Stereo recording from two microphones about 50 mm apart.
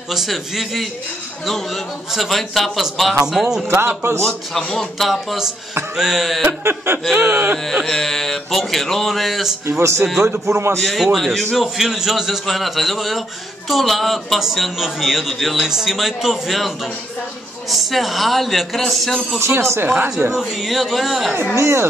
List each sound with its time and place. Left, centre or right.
0.1 s speech: centre
3.3 s a sound: centre
3.7 s a man's voice: right
4.2 s speech: centre
5.9 s a sound: centre
6.6 s a man's voice: right
7.8 s speech: centre
9.7 s speech: right
10.4 s a man's voice: right
10.8 s speech: centre
19.4 s speech: right
19.9 s speech: right
20.2 s speech: centre
21.5 s speech: right